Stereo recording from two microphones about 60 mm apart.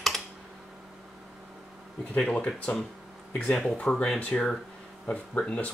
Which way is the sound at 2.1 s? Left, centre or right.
Centre.